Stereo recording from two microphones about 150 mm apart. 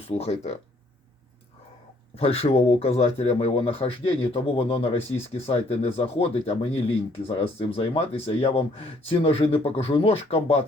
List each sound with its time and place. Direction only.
0.0 s speech: 45° left (ahead or behind)
2.1 s speech: 40° left (ahead or behind)